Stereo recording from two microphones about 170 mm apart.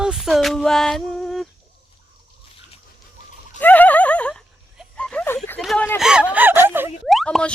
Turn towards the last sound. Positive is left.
turn(degrees=5)  # may be behind; listen again after turning